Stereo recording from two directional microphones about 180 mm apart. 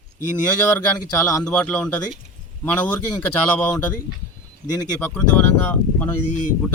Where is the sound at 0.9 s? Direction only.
20° left (ahead or behind).